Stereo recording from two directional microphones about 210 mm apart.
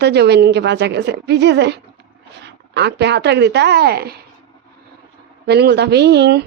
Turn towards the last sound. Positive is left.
turn(degrees=-50)  # may be behind; listen again after turning